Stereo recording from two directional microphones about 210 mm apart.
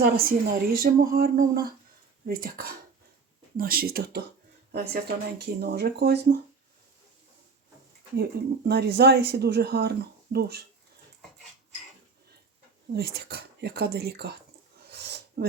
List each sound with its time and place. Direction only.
0.0 s speech: 45° right (ahead or behind)
8.1 s speech: 50° right (ahead or behind)
12.9 s speech: 50° right (ahead or behind)
14.8 s a sound: 50° right (ahead or behind)